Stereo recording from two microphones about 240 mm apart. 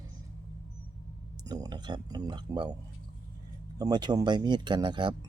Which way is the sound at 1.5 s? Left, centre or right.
Centre.